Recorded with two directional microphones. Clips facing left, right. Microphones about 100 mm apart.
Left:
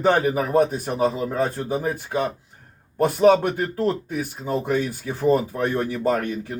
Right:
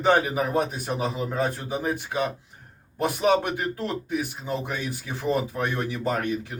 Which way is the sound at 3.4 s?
40° left (ahead or behind).